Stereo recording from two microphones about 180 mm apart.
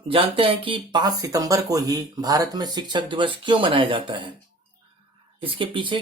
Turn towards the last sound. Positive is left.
turn(degrees=-30)  # may be behind; listen again after turning